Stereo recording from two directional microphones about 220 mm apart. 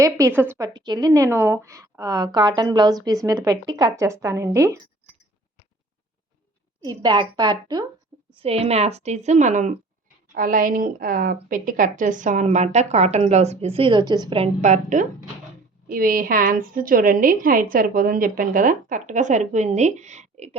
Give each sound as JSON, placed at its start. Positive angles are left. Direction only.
{"t": 0.3, "sound": "a woman's voice", "side_deg": -10}
{"t": 6.8, "sound": "a woman's voice", "side_deg": -20}